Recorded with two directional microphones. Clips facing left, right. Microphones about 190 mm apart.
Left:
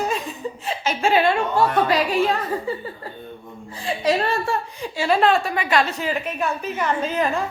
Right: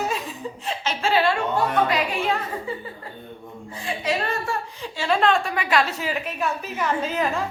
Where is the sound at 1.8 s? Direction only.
35° left (ahead or behind).